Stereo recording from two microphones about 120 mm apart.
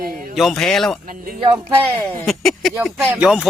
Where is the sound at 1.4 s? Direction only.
40° right (ahead or behind).